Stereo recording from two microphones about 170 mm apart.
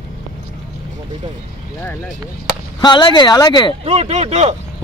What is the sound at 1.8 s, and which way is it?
Speech, 10° left (ahead or behind).